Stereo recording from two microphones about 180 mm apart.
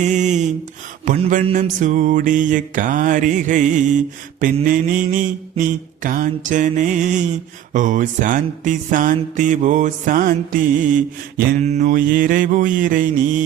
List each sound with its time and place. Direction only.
0.0 s music: 40° right (ahead or behind)